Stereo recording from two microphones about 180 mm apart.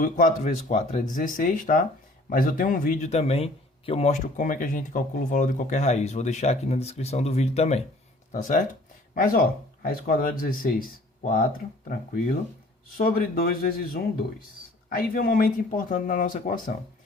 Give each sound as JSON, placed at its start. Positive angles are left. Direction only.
{"t": 0.0, "sound": "speech", "side_deg": 45}
{"t": 13.0, "sound": "speech", "side_deg": 55}